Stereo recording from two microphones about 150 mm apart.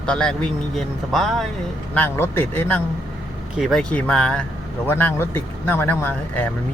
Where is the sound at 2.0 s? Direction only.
15° left (ahead or behind).